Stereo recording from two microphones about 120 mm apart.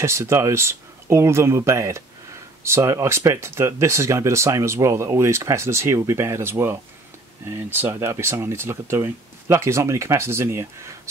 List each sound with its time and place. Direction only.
0.0 s speech: 25° right (ahead or behind)